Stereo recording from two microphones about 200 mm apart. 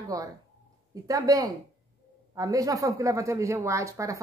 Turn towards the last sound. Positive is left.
turn(degrees=-15)  # may be behind; listen again after turning